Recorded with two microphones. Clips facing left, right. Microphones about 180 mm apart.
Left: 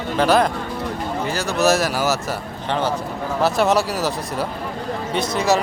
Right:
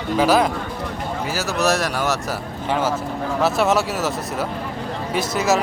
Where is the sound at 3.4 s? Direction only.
Centre (ahead or behind).